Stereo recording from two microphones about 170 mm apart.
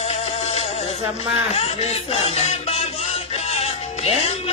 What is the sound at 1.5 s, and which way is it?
Speech, 35° left (ahead or behind).